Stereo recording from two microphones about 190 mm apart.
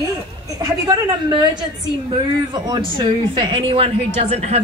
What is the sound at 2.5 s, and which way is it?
A woman's voice, 20° right (ahead or behind).